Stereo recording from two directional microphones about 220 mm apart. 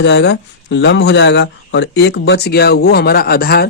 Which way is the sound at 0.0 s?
50° left (ahead or behind).